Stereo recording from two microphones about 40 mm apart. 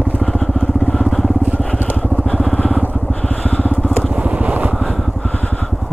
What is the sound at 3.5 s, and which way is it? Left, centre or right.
Vehicle, left.